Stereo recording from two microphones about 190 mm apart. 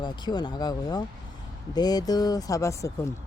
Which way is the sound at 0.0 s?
20° left (ahead or behind).